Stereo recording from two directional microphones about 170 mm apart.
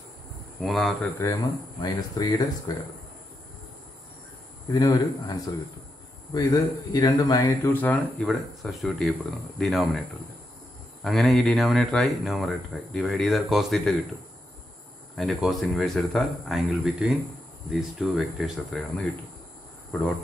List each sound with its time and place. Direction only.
0.6 s speech: centre (ahead or behind)
1.2 s speech: 20° left (ahead or behind)
4.7 s speech: 20° left (ahead or behind); by 10.0 s centre (ahead or behind)
11.1 s speech: centre (ahead or behind)
15.1 s speech: centre (ahead or behind)